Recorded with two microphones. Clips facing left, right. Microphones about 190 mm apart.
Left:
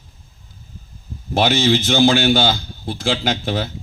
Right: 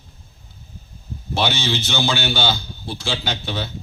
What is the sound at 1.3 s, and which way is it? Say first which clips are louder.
A man's voice: left 6 dB; 50° left (ahead or behind).